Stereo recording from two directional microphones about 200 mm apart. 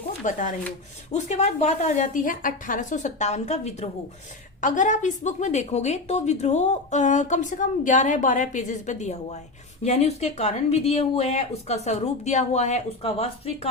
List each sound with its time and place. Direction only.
0.3 s a woman's voice: 40° left (ahead or behind)